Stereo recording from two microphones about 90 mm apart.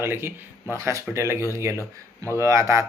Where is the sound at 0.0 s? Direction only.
25° right (ahead or behind).